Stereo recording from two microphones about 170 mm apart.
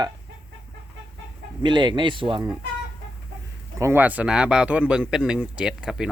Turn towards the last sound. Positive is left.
turn(degrees=-5)  # may be behind; listen again after turning